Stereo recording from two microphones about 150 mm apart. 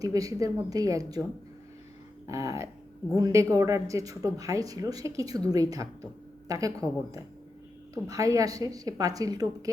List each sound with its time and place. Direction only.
0.0 s a woman's voice: 25° right (ahead or behind)
2.2 s a woman's voice: 20° right (ahead or behind)